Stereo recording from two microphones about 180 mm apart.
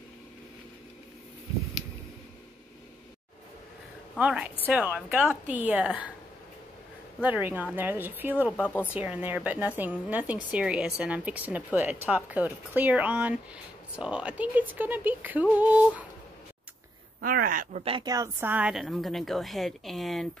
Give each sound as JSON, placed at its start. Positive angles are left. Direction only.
{"t": 4.2, "sound": "a woman's voice", "side_deg": -5}
{"t": 7.2, "sound": "speech", "side_deg": -10}
{"t": 8.6, "sound": "speech", "side_deg": 10}
{"t": 8.9, "sound": "speech", "side_deg": -5}
{"t": 17.2, "sound": "speech", "side_deg": -50}
{"t": 17.8, "sound": "a woman's voice", "side_deg": -25}